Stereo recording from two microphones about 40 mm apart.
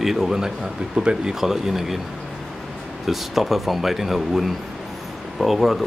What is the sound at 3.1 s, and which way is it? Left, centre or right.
Speech, centre.